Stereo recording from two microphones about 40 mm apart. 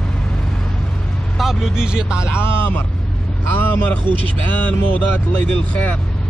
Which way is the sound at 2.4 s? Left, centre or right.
Left.